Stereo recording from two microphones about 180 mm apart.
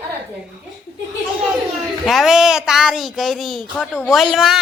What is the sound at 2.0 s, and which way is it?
Speech, centre (ahead or behind).